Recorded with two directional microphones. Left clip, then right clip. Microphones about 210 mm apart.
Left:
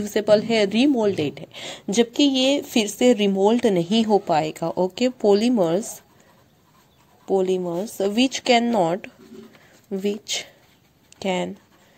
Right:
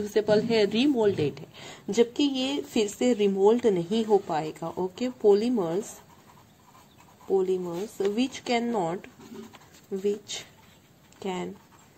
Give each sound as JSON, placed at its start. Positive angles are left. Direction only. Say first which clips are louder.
{"t": 0.0, "sound": "a woman's voice", "louder": "left 5 dB", "side_deg": 35}
{"t": 7.3, "sound": "a woman's voice", "louder": "left 5 dB", "side_deg": 45}